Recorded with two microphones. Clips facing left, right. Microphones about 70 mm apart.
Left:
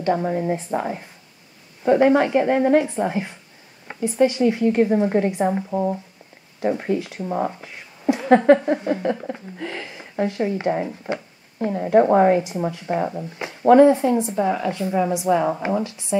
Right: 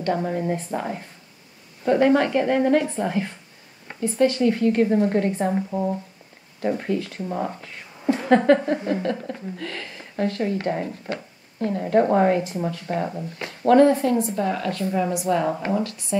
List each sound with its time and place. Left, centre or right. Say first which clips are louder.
0.0 s a woman's voice: left 3 dB; centre